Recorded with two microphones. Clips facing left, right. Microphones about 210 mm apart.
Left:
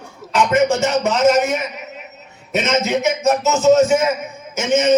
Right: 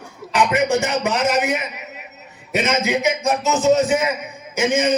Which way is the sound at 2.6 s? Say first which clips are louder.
Left 2 dB; 15° right (ahead or behind).